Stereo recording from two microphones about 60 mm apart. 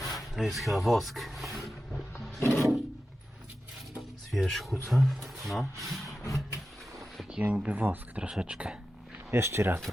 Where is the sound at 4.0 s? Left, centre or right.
Centre.